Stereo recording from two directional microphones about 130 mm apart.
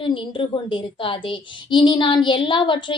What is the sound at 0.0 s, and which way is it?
Speech, 40° left (ahead or behind).